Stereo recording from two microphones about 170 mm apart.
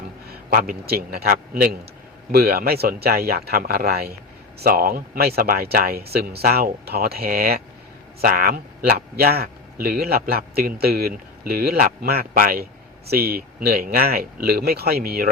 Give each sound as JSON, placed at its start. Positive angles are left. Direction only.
{"t": 0.5, "sound": "a man's voice", "side_deg": -60}